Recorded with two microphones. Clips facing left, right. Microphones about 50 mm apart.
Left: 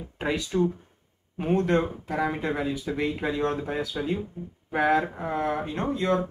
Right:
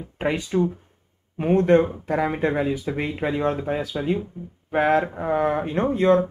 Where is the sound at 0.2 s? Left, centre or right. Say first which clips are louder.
Right 4 dB; right.